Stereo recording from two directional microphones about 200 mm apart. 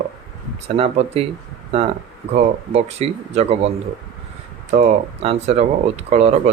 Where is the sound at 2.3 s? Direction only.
30° right (ahead or behind).